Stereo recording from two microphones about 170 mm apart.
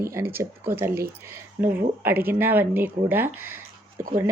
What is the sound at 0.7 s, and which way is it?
Speech, 15° right (ahead or behind).